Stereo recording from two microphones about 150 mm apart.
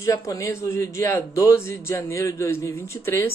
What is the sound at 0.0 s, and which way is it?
A man's voice, 20° left (ahead or behind).